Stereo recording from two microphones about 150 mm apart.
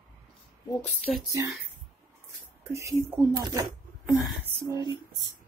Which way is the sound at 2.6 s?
20° right (ahead or behind).